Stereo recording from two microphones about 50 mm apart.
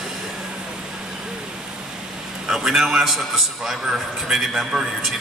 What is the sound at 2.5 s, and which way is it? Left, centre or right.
A man's voice, centre.